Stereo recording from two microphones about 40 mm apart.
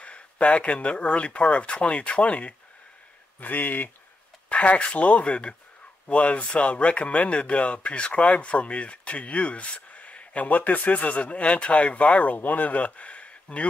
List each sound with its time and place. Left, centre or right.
0.0 s speech: left
3.3 s speech: left
4.5 s speech: left
12.4 s speech: left